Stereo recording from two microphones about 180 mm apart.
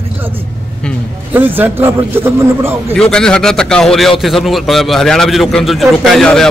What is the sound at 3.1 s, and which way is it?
A man's voice, 5° left (ahead or behind).